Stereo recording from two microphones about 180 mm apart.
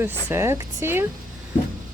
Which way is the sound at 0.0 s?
10° right (ahead or behind).